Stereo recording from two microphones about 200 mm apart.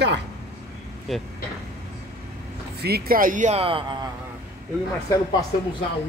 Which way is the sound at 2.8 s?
50° right (ahead or behind).